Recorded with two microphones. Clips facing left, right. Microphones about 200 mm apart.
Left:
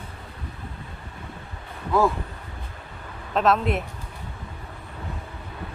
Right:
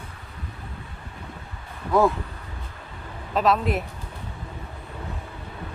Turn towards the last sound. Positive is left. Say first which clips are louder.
# even
turn(degrees=0)  # may be behind; listen again after turning